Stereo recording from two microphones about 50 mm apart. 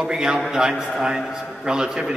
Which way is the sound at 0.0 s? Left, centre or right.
Centre.